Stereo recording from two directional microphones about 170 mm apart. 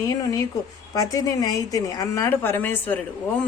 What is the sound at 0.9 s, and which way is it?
A woman's voice, 20° left (ahead or behind).